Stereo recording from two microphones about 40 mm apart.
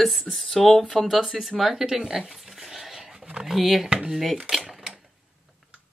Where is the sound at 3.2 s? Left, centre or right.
Right.